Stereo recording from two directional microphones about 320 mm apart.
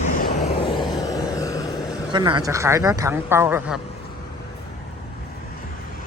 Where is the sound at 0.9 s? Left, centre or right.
Centre.